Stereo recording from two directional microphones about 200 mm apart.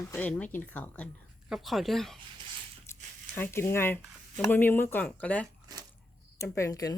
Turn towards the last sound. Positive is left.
turn(degrees=15)  # may be behind; listen again after turning